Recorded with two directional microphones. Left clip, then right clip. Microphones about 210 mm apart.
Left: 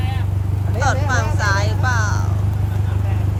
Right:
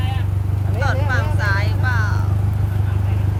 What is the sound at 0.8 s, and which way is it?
Vehicle, 5° left (ahead or behind).